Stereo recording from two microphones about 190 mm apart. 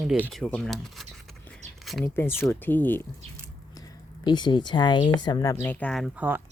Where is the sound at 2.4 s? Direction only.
10° left (ahead or behind).